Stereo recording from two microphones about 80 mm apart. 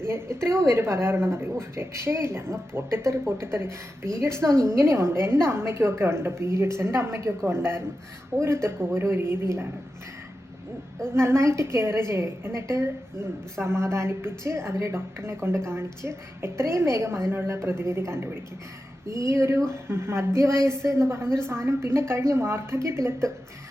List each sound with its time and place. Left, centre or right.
0.0 s a woman's voice: right
11.1 s a woman's voice: right